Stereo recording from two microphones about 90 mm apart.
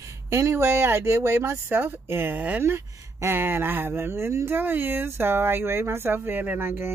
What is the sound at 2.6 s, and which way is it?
Speech, 30° right (ahead or behind).